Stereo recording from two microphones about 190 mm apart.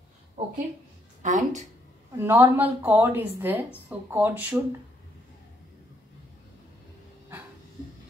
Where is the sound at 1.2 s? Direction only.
40° right (ahead or behind).